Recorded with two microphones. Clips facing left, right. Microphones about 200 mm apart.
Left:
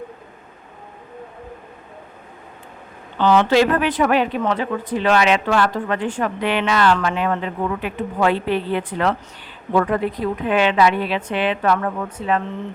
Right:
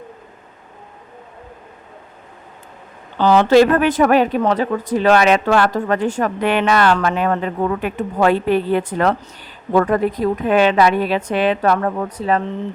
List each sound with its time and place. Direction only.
3.2 s a woman's voice: 40° right (ahead or behind)